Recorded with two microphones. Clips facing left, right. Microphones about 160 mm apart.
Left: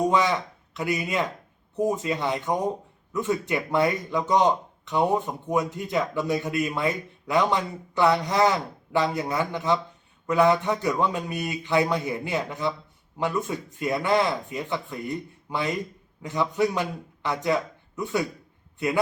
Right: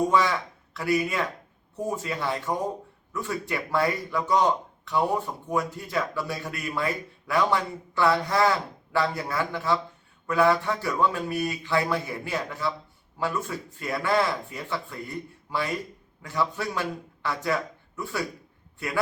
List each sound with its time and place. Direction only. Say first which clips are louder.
0.1 s speech: left 1 dB; 20° left (ahead or behind)